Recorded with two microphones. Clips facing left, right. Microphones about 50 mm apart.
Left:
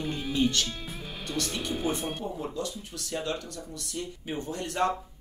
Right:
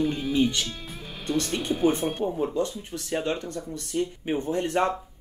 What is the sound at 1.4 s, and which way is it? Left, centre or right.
Speech, right.